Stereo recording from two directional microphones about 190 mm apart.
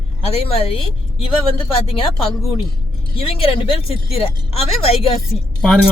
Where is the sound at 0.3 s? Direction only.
30° left (ahead or behind).